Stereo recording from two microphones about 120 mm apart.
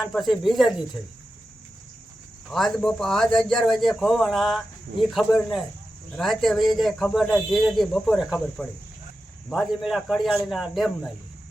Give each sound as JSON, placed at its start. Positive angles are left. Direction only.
{"t": 0.0, "sound": "a man's voice", "side_deg": 0}
{"t": 2.5, "sound": "a man's voice", "side_deg": 0}